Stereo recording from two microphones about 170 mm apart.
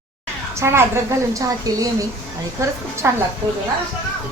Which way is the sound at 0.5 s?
15° right (ahead or behind).